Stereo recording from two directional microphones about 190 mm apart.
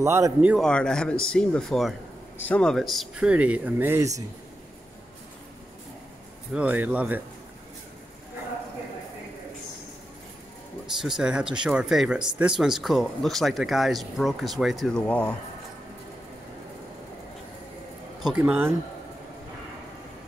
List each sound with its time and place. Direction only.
0.0 s speech: 15° right (ahead or behind)
0.7 s speech: 5° left (ahead or behind); by 4.1 s 10° right (ahead or behind)
6.5 s speech: 5° right (ahead or behind)
11.0 s speech: 5° right (ahead or behind)
18.2 s speech: 5° right (ahead or behind)